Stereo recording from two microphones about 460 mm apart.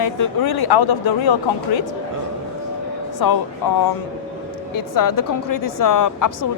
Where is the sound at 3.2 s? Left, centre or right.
Left.